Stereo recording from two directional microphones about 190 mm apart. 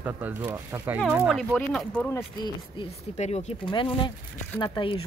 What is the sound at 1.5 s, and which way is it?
Speech, 5° left (ahead or behind).